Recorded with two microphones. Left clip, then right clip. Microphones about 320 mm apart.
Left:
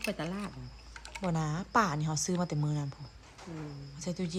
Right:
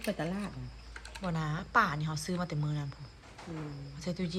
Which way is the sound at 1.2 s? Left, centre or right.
Centre.